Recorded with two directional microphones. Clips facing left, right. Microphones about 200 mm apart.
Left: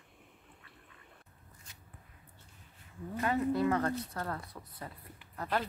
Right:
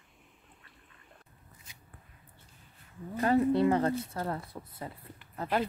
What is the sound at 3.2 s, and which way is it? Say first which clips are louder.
Speech: right 5 dB; 35° right (ahead or behind).